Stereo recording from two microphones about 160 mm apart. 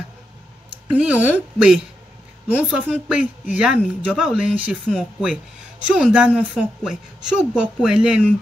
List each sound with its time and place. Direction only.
0.9 s a woman's voice: 10° right (ahead or behind)